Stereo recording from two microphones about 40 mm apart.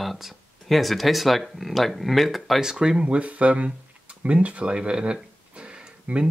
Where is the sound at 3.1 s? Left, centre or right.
Right.